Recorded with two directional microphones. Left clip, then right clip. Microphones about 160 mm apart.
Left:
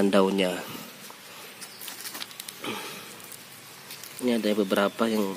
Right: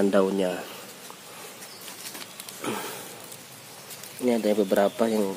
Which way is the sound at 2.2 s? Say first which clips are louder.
Right 3 dB; 5° right (ahead or behind).